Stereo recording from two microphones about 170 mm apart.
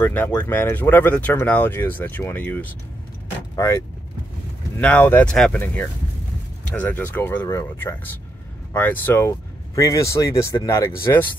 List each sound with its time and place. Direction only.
0.0 s speech: 10° left (ahead or behind)
4.7 s speech: 10° left (ahead or behind)